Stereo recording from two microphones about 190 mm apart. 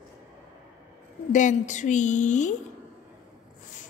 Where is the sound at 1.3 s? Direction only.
40° left (ahead or behind).